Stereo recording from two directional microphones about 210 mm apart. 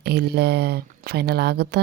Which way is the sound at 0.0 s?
50° right (ahead or behind).